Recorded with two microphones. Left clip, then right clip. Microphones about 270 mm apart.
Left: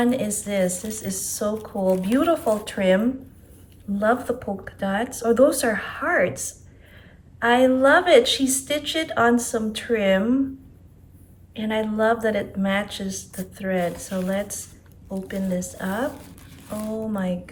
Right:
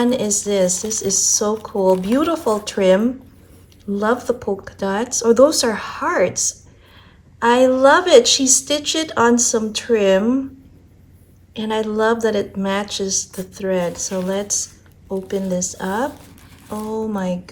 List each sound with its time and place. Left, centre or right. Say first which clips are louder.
0.0 s speech: right 5 dB; centre
11.5 s speech: right 4 dB; centre
17.1 s speech: right 4 dB; centre